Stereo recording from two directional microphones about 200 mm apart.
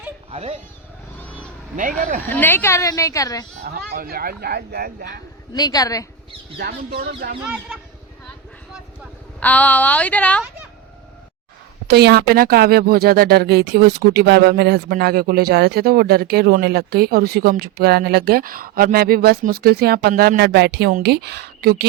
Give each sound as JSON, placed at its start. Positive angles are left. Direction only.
{"t": 0.3, "sound": "speech", "side_deg": -30}
{"t": 1.7, "sound": "speech", "side_deg": -40}
{"t": 2.3, "sound": "a woman's voice", "side_deg": 10}
{"t": 3.6, "sound": "speech", "side_deg": -50}
{"t": 5.5, "sound": "a woman's voice", "side_deg": 20}
{"t": 6.6, "sound": "speech", "side_deg": -50}
{"t": 9.4, "sound": "a woman's voice", "side_deg": 10}
{"t": 11.9, "sound": "speech", "side_deg": -55}